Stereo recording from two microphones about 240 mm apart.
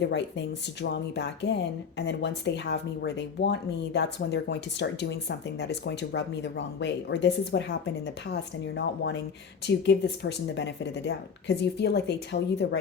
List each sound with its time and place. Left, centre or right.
0.0 s speech: left